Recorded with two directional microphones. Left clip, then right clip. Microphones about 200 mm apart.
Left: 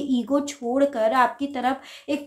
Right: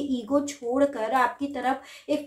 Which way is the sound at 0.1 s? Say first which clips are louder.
Left 3 dB; 30° left (ahead or behind).